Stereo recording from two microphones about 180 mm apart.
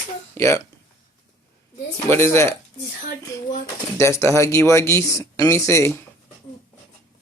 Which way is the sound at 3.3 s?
15° left (ahead or behind).